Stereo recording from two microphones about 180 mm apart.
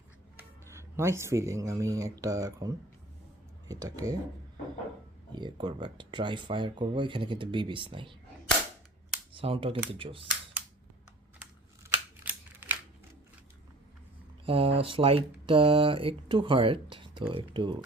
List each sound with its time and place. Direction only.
0.3 s speech: 15° right (ahead or behind)
5.3 s speech: 25° right (ahead or behind)
9.3 s speech: 30° right (ahead or behind)
11.8 s camera: 10° right (ahead or behind)
14.4 s speech: 30° right (ahead or behind)